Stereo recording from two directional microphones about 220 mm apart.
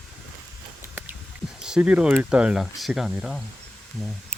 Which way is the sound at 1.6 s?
5° right (ahead or behind).